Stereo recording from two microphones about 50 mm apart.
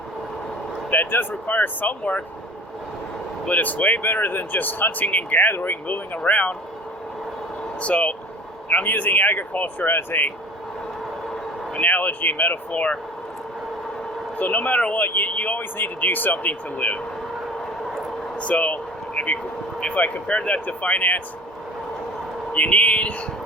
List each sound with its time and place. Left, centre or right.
0.9 s speech: left
3.4 s speech: left
7.8 s speech: left
11.8 s speech: left
14.3 s speech: left
14.9 s speech: left
18.3 s a sound: left
19.8 s speech: left
22.5 s speech: left